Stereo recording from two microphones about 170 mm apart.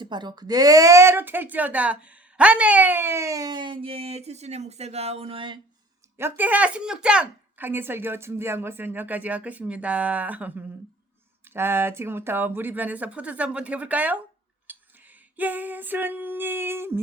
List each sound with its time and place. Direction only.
0.0 s speech: 25° right (ahead or behind)
6.1 s speech: 10° right (ahead or behind)
14.7 s a sound: 10° right (ahead or behind)